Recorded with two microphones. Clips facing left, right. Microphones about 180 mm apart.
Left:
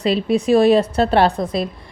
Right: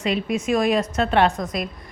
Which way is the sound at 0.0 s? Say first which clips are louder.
Left 6 dB; 30° left (ahead or behind).